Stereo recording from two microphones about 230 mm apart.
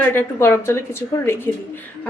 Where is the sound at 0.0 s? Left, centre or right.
Centre.